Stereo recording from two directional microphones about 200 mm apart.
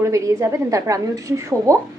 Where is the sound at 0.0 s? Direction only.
15° right (ahead or behind).